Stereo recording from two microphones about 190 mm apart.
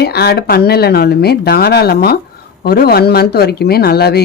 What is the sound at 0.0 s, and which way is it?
Speech, 55° left (ahead or behind).